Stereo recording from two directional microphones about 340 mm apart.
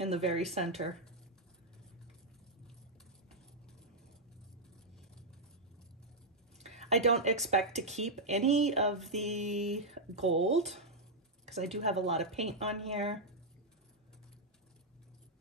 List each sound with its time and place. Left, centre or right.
0.0 s speech: centre
6.6 s a sound: centre
7.2 s speech: centre